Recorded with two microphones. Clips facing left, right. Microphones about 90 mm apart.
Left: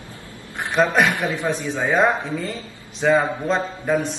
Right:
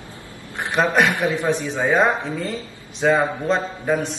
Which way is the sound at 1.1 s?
20° right (ahead or behind).